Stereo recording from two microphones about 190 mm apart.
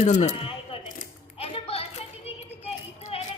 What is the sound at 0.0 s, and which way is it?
Speech, 35° left (ahead or behind).